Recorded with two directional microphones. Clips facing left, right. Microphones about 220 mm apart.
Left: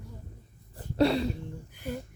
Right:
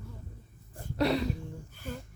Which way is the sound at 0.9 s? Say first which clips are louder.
Left 4 dB; 30° left (ahead or behind).